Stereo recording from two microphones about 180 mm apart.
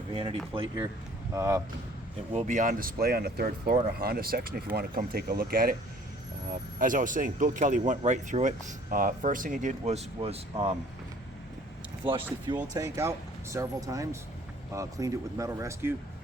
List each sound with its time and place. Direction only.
0.1 s speech: 30° right (ahead or behind)
1.3 s speech: 15° right (ahead or behind)
2.3 s speech: 45° right (ahead or behind)
6.7 s speech: 45° right (ahead or behind); by 10.8 s 30° right (ahead or behind)
12.1 s speech: 25° right (ahead or behind)